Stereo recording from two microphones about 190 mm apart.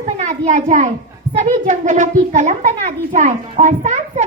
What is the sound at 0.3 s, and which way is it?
A child's voice, 40° right (ahead or behind).